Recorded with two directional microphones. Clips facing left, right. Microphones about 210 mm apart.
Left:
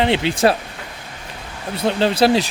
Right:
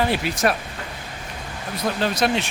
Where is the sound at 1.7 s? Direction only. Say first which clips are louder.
Left 5 dB; 30° left (ahead or behind).